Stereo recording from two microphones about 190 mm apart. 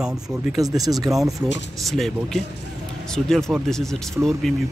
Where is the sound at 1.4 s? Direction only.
65° left (ahead or behind).